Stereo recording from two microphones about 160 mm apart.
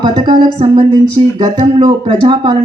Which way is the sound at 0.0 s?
30° right (ahead or behind).